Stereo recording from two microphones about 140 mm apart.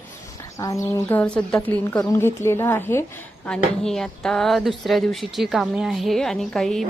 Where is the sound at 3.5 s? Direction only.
5° left (ahead or behind).